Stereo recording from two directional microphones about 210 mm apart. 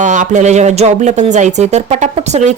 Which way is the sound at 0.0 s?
35° right (ahead or behind).